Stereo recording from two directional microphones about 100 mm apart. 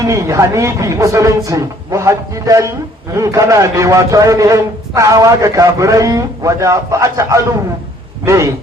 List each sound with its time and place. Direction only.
0.0 s a man's voice: 30° right (ahead or behind)